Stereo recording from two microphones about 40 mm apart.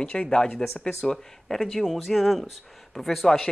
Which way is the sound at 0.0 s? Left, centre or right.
Left.